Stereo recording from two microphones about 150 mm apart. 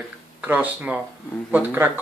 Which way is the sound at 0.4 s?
10° right (ahead or behind).